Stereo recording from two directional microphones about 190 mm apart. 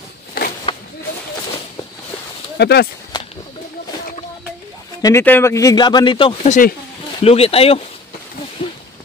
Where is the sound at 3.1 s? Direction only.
25° left (ahead or behind).